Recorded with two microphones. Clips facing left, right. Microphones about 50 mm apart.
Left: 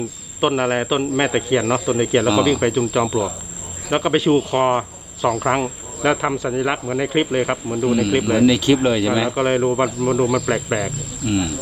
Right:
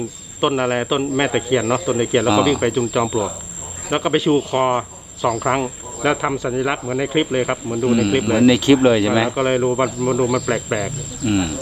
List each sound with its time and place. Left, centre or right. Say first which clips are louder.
0.4 s cricket: even; centre
7.9 s speech: right 1 dB; centre
9.4 s cricket: even; centre
11.3 s speech: right 2 dB; centre